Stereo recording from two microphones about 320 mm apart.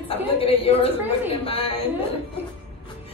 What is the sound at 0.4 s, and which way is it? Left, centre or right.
A woman's voice, centre.